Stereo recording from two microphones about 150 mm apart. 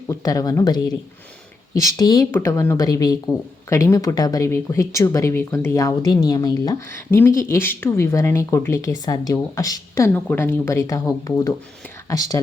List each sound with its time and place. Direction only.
0.1 s speech: 25° left (ahead or behind)